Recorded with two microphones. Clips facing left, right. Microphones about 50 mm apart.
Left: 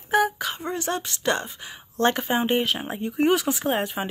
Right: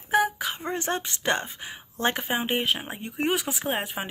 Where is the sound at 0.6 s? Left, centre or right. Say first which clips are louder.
Left 1 dB; right.